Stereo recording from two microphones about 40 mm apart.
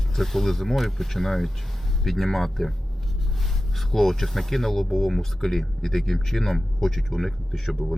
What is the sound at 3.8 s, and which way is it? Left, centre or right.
Speech, centre.